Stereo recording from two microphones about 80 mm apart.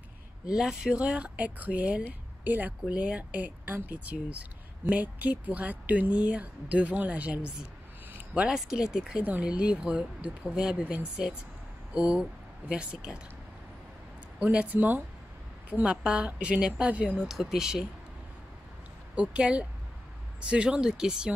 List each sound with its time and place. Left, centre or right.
0.5 s speech: centre
14.4 s speech: centre
17.3 s speech: centre
19.1 s speech: centre